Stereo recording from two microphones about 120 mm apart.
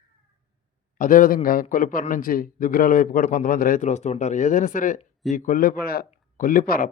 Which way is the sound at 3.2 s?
85° left.